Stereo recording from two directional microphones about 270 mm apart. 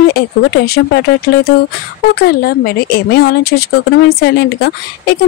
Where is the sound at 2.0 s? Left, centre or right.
Left.